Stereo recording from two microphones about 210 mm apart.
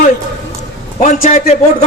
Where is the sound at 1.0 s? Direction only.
35° left (ahead or behind).